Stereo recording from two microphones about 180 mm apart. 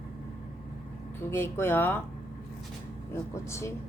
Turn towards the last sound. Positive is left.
turn(degrees=15)  # may be behind; listen again after turning